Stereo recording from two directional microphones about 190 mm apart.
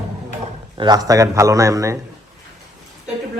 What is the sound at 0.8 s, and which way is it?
A man's voice, 20° right (ahead or behind).